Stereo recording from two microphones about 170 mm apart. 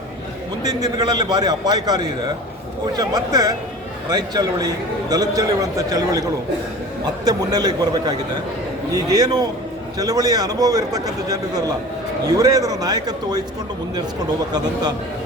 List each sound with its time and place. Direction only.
0.9 s a man's voice: 25° right (ahead or behind)
7.3 s a man's voice: 25° right (ahead or behind)